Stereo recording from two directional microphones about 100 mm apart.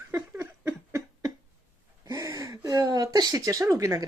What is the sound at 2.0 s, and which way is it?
Gasp, 40° right (ahead or behind).